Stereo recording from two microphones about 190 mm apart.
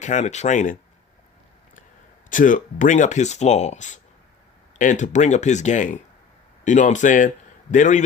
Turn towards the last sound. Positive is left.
turn(degrees=40)  # may be behind; listen again after turning